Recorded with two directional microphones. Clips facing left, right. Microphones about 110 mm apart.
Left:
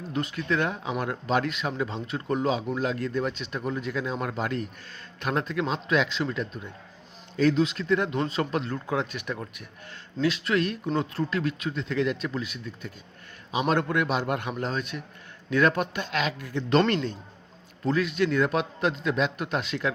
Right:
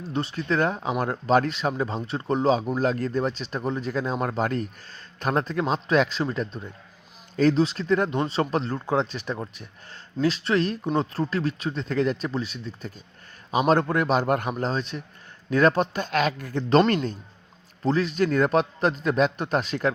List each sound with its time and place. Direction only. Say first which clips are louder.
0.1 s speech: right 2 dB; 30° right (ahead or behind)